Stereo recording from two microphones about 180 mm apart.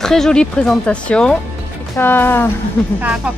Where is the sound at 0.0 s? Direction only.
5° left (ahead or behind).